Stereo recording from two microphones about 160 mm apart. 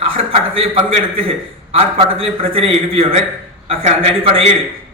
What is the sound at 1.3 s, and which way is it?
A man's voice, 35° right (ahead or behind).